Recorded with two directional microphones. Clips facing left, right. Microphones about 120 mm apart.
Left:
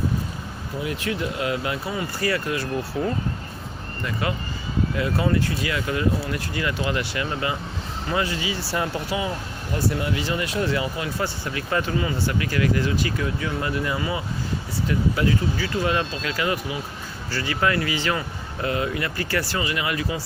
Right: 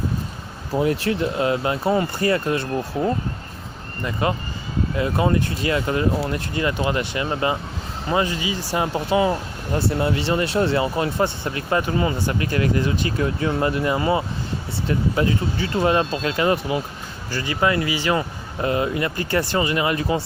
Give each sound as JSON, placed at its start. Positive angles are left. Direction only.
{"t": 0.8, "sound": "speech", "side_deg": -35}
{"t": 17.3, "sound": "speech", "side_deg": -20}
{"t": 18.2, "sound": "speech", "side_deg": -30}